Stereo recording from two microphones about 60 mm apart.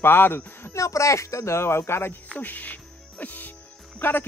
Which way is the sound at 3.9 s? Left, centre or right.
Left.